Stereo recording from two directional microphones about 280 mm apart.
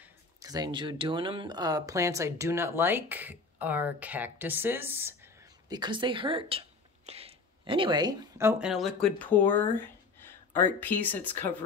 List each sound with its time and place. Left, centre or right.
0.4 s speech: centre